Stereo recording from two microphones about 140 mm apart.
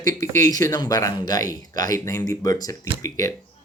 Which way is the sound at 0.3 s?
70° right (ahead or behind).